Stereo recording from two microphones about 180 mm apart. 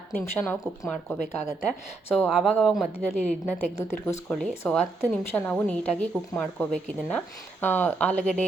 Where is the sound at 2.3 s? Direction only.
Centre (ahead or behind).